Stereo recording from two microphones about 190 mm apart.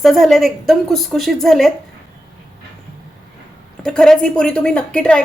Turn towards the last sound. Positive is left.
turn(degrees=5)  # may be behind; listen again after turning